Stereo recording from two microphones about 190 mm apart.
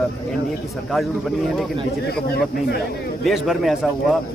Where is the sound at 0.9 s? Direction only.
Centre (ahead or behind).